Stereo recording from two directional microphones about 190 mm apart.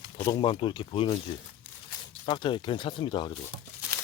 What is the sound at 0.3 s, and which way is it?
Speech, 25° left (ahead or behind).